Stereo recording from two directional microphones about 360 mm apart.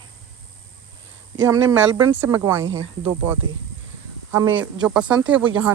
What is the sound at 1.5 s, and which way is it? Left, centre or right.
Speech, centre.